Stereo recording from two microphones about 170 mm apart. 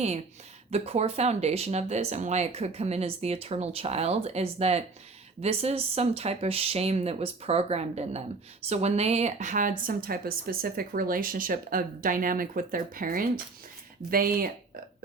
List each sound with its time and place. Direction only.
0.7 s a woman's voice: 40° right (ahead or behind); by 14.5 s 60° right (ahead or behind)